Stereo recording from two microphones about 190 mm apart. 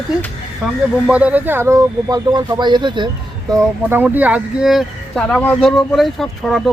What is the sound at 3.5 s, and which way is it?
Speech, 15° right (ahead or behind).